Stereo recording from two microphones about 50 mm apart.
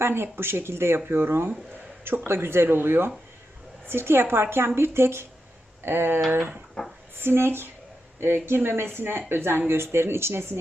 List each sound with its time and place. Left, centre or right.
0.0 s speech: right
6.8 s a sound: centre
7.2 s speech: right